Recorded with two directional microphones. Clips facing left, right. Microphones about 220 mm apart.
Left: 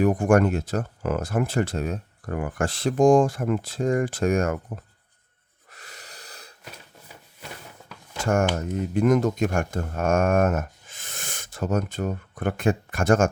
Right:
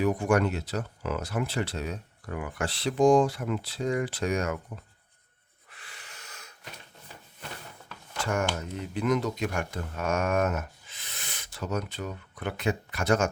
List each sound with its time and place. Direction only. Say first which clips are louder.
0.0 s speech: left 5 dB; 50° left (ahead or behind)
5.7 s snort: left 5 dB; 40° left (ahead or behind)
8.2 s speech: left 6 dB; 50° left (ahead or behind)